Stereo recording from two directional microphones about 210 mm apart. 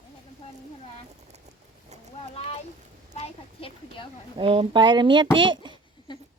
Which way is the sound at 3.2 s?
25° left (ahead or behind).